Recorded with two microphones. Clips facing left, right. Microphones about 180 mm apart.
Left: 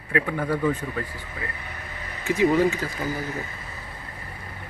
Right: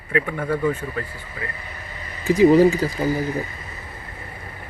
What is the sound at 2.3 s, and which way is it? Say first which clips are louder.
Speech: right 7 dB; 35° right (ahead or behind).